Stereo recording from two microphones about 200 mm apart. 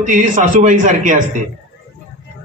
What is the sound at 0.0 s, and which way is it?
A man's voice, 40° right (ahead or behind).